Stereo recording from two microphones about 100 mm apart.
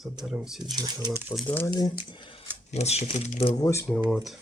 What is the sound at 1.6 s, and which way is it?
Speech, 40° left (ahead or behind).